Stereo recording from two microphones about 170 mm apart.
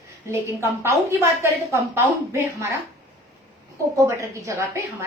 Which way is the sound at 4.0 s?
20° right (ahead or behind).